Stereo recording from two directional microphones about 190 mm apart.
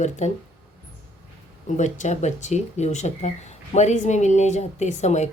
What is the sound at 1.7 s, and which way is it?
A woman's voice, 40° left (ahead or behind).